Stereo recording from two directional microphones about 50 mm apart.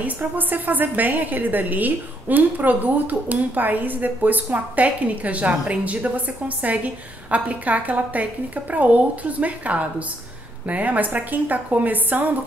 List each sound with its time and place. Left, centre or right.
0.0 s a woman's voice: right